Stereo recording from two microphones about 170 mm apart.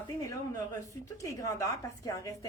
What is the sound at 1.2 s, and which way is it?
A woman's voice, 20° left (ahead or behind).